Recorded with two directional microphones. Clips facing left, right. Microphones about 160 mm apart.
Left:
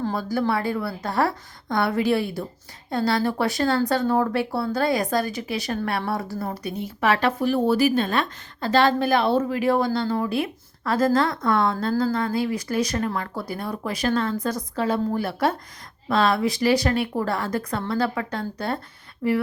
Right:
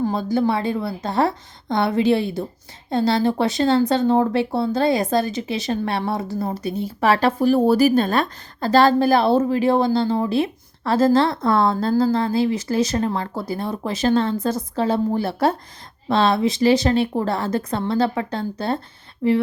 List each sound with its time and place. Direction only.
0.0 s speech: 20° right (ahead or behind)